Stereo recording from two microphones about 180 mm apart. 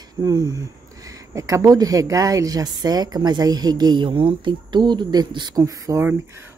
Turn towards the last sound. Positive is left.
turn(degrees=-15)  # may be behind; listen again after turning